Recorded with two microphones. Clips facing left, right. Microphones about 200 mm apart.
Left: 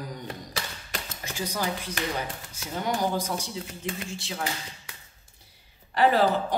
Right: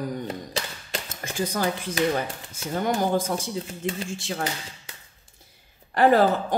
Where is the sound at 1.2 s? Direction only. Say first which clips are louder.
Right 3 dB; 50° right (ahead or behind).